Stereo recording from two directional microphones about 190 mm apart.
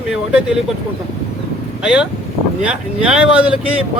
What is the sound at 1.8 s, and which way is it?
Speech, 5° right (ahead or behind).